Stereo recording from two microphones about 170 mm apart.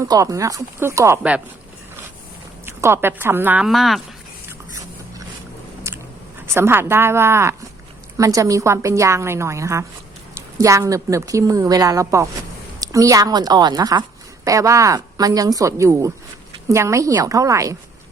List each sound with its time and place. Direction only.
0.1 s a woman's voice: 20° right (ahead or behind)
2.6 s a woman's voice: 15° right (ahead or behind)
3.7 s speech: centre (ahead or behind)
5.9 s biting: 15° right (ahead or behind)
6.4 s a woman's voice: 15° right (ahead or behind)